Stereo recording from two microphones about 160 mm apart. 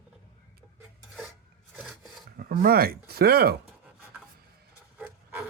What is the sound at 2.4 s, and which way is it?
Speech, 70° right (ahead or behind).